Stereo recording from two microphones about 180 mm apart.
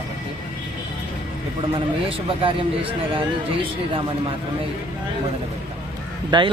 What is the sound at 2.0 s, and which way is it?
Speech, 30° right (ahead or behind).